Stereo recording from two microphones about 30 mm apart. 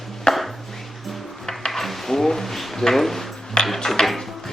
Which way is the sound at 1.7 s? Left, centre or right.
Centre.